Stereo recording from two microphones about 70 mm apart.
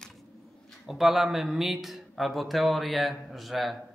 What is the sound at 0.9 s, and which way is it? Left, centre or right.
Speech, centre.